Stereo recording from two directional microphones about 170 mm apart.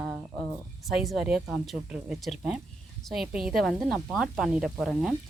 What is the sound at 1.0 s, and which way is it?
Speech, centre (ahead or behind).